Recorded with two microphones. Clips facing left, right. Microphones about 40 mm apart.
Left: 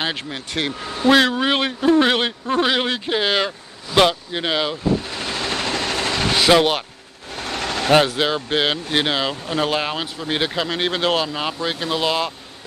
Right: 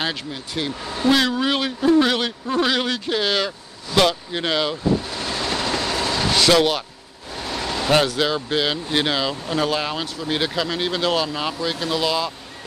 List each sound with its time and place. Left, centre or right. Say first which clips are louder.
0.3 s speech: left 2 dB; left
1.0 s speech: left 3 dB; left
4.0 s speech: left 2 dB; centre
5.2 s vehicle: even; left
6.3 s vehicle: left 2 dB; left
7.3 s vehicle: left 1 dB; left
7.9 s speech: left 2 dB; left
8.5 s speech: left 2 dB; left
8.9 s speech: right 1 dB; left
10.8 s speech: left 2 dB; left